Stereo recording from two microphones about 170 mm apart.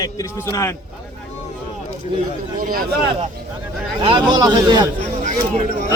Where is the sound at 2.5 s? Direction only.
60° right (ahead or behind).